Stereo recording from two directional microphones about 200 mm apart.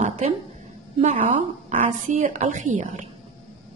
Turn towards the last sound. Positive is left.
turn(degrees=-40)  # may be behind; listen again after turning